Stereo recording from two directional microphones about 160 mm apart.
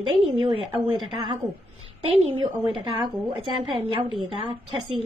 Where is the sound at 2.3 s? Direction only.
30° right (ahead or behind).